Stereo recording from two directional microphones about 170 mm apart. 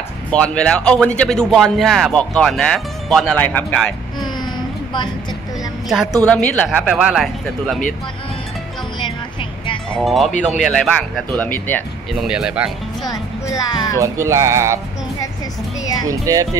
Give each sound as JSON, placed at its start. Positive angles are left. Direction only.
{"t": 0.3, "sound": "speech", "side_deg": 5}
{"t": 6.2, "sound": "speech", "side_deg": 10}
{"t": 9.0, "sound": "a sound", "side_deg": 30}
{"t": 10.0, "sound": "speech", "side_deg": 0}
{"t": 12.2, "sound": "speech", "side_deg": -5}
{"t": 13.0, "sound": "speech", "side_deg": 20}
{"t": 14.0, "sound": "speech", "side_deg": -20}
{"t": 15.8, "sound": "music", "side_deg": 20}
{"t": 16.1, "sound": "speech", "side_deg": -20}